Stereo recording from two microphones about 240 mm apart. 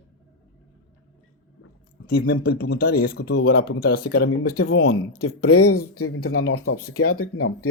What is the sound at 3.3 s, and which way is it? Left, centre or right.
Speech, left.